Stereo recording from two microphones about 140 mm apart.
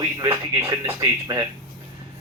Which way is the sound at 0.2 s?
20° right (ahead or behind).